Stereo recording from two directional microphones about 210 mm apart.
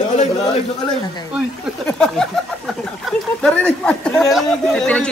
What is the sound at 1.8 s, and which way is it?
Speech, 5° left (ahead or behind).